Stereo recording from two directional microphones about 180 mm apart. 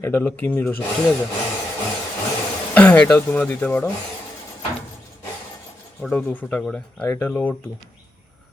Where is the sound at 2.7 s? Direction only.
10° left (ahead or behind).